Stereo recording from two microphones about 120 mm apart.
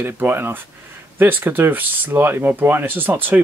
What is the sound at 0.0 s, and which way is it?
Speech, 15° right (ahead or behind).